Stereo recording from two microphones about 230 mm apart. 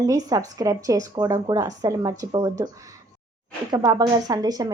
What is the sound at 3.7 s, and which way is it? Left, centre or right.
Speech, centre.